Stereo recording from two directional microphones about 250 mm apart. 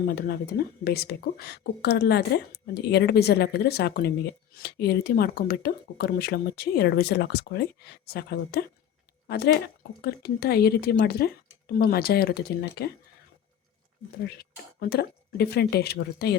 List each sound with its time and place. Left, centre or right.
0.1 s speech: left
14.3 s speech: left